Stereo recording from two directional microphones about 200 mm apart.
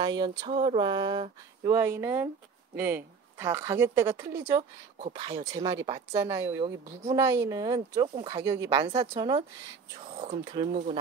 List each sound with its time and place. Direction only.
0.0 s a woman's voice: 25° right (ahead or behind)
10.5 s speech: 25° right (ahead or behind)